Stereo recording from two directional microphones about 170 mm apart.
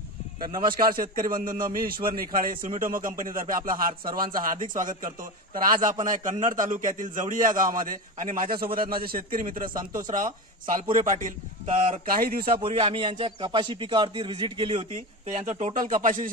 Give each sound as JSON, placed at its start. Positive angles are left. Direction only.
{"t": 0.4, "sound": "a man's voice", "side_deg": -25}
{"t": 0.7, "sound": "a man's voice", "side_deg": -55}
{"t": 12.2, "sound": "a man's voice", "side_deg": -60}
{"t": 12.5, "sound": "a man's voice", "side_deg": -35}
{"t": 15.2, "sound": "a man's voice", "side_deg": -45}